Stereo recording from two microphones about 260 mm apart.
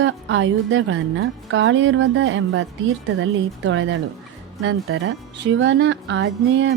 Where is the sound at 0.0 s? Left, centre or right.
Right.